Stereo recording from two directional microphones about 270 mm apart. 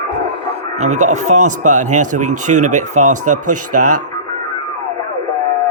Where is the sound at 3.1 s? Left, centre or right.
Right.